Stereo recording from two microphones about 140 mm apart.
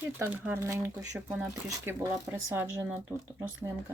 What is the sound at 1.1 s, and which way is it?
Speech, 10° right (ahead or behind).